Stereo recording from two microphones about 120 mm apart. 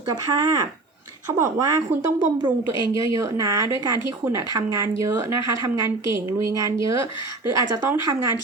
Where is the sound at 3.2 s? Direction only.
30° right (ahead or behind).